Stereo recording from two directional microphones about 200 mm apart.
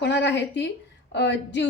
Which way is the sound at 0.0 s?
60° left (ahead or behind).